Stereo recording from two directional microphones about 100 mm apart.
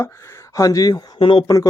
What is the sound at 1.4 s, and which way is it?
Speech, 35° left (ahead or behind).